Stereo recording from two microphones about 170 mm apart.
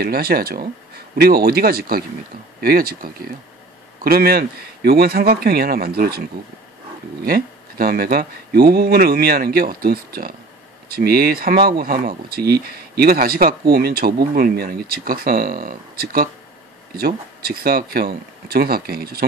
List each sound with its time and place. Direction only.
0.0 s speech: 65° right (ahead or behind)
7.2 s speech: 60° right (ahead or behind)